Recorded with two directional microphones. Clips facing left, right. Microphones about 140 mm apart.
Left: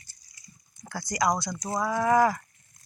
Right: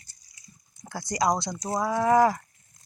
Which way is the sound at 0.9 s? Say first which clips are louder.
Right 1 dB; 25° right (ahead or behind).